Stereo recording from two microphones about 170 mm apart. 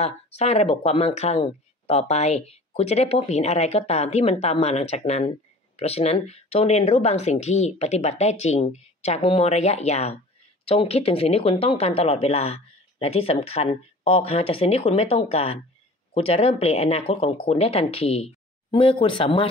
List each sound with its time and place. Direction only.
0.0 s speech: 40° left (ahead or behind)